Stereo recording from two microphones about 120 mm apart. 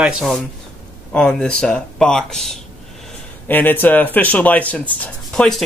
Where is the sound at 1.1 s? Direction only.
5° left (ahead or behind).